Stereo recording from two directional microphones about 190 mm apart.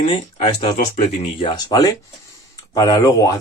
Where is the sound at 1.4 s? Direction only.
20° left (ahead or behind).